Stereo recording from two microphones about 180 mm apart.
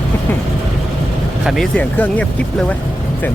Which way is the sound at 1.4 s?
5° left (ahead or behind).